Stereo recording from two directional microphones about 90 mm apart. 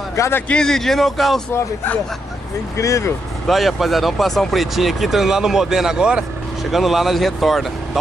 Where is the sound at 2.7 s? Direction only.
35° left (ahead or behind).